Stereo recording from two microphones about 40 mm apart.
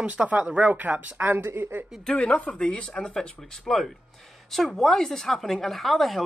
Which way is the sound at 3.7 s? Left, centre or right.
Centre.